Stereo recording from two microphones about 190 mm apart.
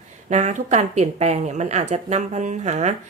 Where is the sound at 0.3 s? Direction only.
35° right (ahead or behind).